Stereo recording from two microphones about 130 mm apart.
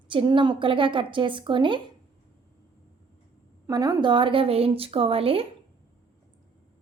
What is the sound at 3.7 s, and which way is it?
A woman's voice, 30° right (ahead or behind).